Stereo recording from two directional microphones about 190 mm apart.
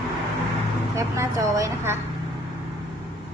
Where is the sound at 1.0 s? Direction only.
15° right (ahead or behind).